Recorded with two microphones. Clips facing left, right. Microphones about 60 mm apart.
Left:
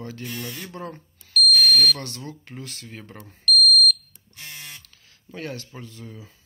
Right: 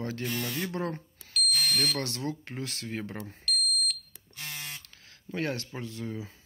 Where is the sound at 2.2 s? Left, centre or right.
Right.